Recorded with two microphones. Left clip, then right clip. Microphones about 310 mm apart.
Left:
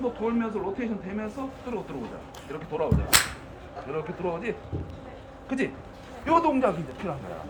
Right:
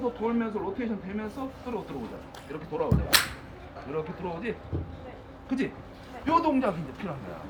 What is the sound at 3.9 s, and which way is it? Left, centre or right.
Speech, centre.